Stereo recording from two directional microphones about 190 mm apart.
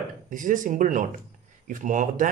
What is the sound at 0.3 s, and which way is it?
Speech, 45° right (ahead or behind).